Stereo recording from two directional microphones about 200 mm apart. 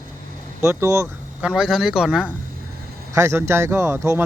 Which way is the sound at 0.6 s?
15° right (ahead or behind).